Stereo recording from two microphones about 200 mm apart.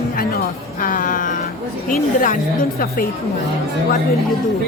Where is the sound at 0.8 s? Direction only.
40° left (ahead or behind).